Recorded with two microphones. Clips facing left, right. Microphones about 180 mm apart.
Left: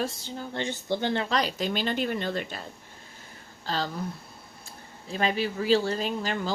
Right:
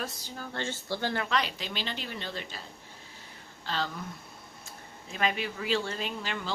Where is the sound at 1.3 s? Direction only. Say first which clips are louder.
Left 4 dB; 40° left (ahead or behind).